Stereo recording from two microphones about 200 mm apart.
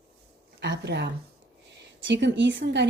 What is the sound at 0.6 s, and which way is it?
A woman's voice, 60° right (ahead or behind).